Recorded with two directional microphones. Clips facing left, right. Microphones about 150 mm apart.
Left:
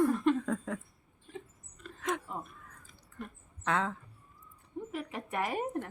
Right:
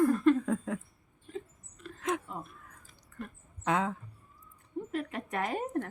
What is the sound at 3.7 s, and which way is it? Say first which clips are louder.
Speech: right 2 dB; 10° right (ahead or behind).